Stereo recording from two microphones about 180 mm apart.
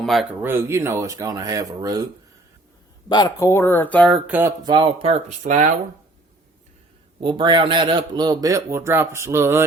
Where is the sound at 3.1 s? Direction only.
20° left (ahead or behind); by 4.2 s 5° left (ahead or behind).